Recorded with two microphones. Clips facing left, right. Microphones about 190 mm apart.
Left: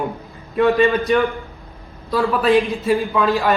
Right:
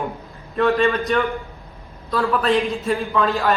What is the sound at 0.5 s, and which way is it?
A man's voice, 10° left (ahead or behind).